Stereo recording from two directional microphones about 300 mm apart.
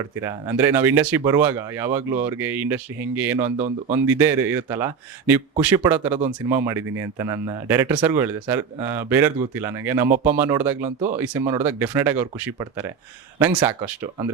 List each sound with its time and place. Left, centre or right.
0.2 s speech: centre
3.3 s speech: right
3.9 s speech: centre
10.8 s speech: right
11.2 s speech: centre